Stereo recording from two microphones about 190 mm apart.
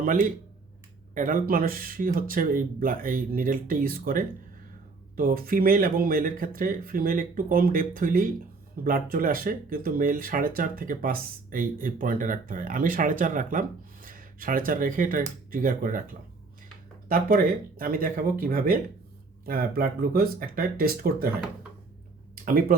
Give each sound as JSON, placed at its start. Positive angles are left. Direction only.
{"t": 0.0, "sound": "speech", "side_deg": -45}
{"t": 17.1, "sound": "speech", "side_deg": -50}